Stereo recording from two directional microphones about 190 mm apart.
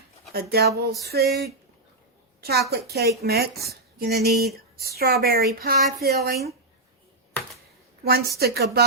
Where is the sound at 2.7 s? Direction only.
55° right (ahead or behind).